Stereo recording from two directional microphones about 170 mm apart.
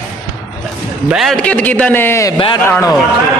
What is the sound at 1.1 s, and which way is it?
A man's voice, centre (ahead or behind).